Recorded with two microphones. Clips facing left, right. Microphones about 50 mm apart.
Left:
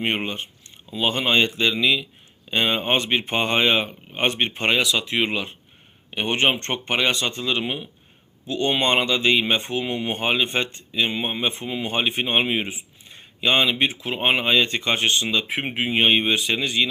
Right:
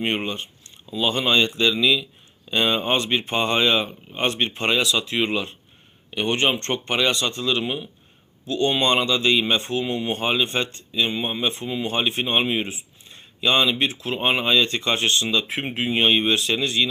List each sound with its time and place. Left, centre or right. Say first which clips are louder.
0.0 s speech: even; left
9.8 s speech: even; left
11.9 s speech: left 1 dB; left